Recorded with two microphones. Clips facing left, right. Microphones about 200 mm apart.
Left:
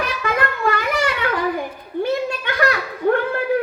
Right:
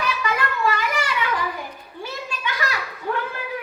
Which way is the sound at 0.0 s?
55° left (ahead or behind).